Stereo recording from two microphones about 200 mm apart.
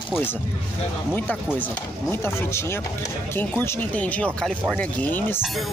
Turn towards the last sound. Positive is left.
turn(degrees=10)  # may be behind; listen again after turning